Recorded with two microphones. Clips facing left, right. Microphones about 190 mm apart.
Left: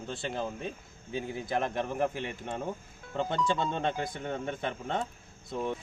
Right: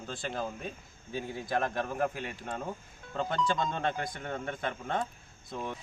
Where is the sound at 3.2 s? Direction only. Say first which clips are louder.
Left 1 dB; 15° left (ahead or behind).